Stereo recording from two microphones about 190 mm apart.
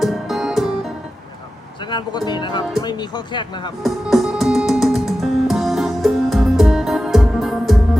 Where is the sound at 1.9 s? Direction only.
25° left (ahead or behind).